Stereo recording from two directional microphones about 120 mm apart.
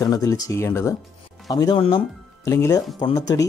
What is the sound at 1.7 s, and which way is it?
Speech, 45° left (ahead or behind).